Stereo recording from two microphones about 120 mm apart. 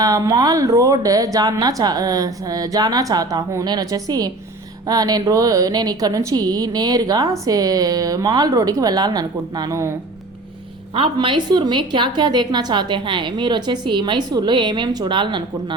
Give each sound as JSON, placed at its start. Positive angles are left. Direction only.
{"t": 0.0, "sound": "a woman's voice", "side_deg": -30}
{"t": 10.9, "sound": "a woman's voice", "side_deg": -50}